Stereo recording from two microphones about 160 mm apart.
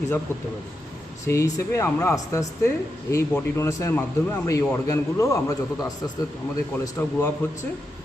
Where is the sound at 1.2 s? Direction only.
15° left (ahead or behind).